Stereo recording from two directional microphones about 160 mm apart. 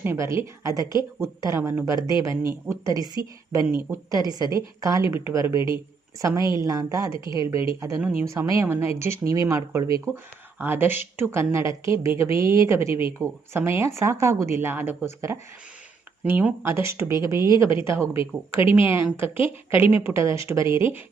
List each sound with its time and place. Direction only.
0.0 s speech: 15° right (ahead or behind)
6.4 s a woman's voice: 25° left (ahead or behind)
6.7 s a woman's voice: 20° right (ahead or behind)
17.3 s a woman's voice: 25° left (ahead or behind)
17.7 s a woman's voice: 15° right (ahead or behind)